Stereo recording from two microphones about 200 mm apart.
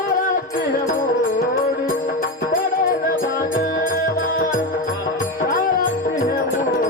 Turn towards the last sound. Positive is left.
turn(degrees=45)  # may be behind; listen again after turning